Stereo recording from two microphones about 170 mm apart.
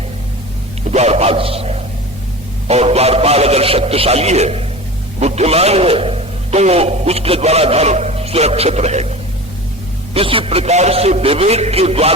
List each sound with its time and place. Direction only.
0.9 s a man's voice: 40° right (ahead or behind)
10.2 s a man's voice: 30° right (ahead or behind)